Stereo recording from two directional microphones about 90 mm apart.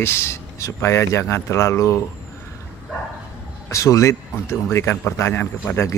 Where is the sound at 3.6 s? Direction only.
35° left (ahead or behind).